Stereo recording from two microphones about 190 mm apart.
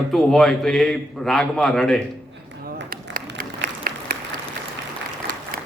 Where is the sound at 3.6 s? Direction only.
50° right (ahead or behind).